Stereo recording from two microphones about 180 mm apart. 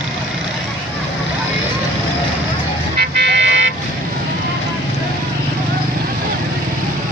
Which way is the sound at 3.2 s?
75° right (ahead or behind).